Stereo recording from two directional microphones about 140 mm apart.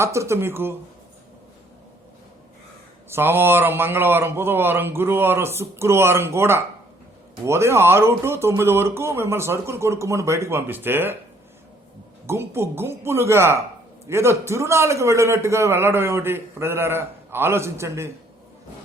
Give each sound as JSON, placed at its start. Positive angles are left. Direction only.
{"t": 0.0, "sound": "a man's voice", "side_deg": -20}
{"t": 3.1, "sound": "a man's voice", "side_deg": -15}
{"t": 12.2, "sound": "a man's voice", "side_deg": -20}